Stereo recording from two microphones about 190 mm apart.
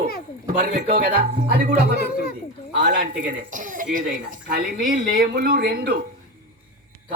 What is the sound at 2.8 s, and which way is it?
Speech, 50° right (ahead or behind).